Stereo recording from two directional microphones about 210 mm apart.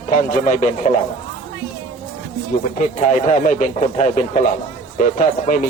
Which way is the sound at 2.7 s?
35° left (ahead or behind).